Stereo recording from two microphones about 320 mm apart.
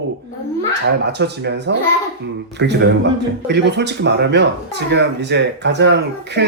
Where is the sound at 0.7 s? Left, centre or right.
Right.